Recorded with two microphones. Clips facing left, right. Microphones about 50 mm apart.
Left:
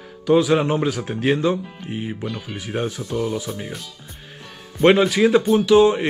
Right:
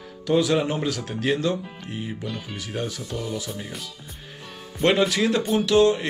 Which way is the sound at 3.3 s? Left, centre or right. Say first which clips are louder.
Left 4 dB; centre.